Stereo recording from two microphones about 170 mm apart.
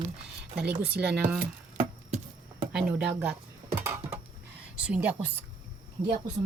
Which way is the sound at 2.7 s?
5° right (ahead or behind).